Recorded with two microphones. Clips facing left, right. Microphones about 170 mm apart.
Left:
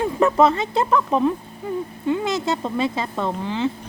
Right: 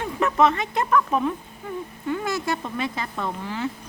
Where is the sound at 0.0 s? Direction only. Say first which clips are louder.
Left 4 dB; 30° left (ahead or behind).